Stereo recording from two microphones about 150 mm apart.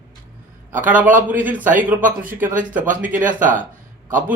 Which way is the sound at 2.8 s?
60° right (ahead or behind).